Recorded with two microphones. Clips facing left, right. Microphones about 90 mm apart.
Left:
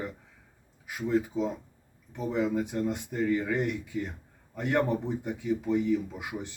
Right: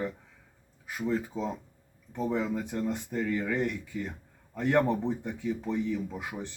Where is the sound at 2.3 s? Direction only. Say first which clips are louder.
Left 3 dB; 10° left (ahead or behind).